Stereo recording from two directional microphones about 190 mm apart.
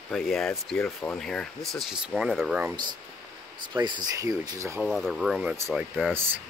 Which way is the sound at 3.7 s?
20° right (ahead or behind).